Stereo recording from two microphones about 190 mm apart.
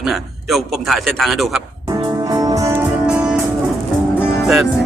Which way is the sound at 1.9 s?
20° right (ahead or behind).